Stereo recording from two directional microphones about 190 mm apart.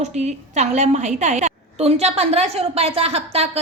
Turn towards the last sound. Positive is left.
turn(degrees=-30)  # may be behind; listen again after turning